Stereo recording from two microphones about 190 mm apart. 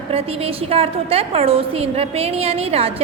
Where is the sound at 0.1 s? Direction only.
30° right (ahead or behind).